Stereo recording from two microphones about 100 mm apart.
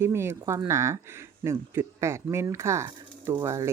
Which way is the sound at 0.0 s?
25° right (ahead or behind).